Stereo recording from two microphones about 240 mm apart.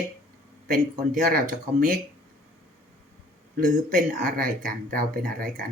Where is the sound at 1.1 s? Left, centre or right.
Right.